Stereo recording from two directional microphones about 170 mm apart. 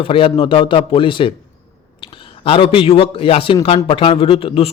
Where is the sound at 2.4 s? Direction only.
30° left (ahead or behind).